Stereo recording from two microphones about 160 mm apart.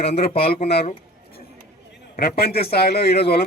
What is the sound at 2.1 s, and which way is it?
A man's voice, 85° left.